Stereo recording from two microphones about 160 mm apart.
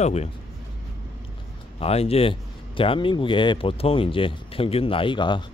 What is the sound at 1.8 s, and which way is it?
Speech, 40° left (ahead or behind).